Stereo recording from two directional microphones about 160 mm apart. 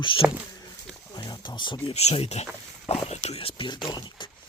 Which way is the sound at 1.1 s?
30° left (ahead or behind).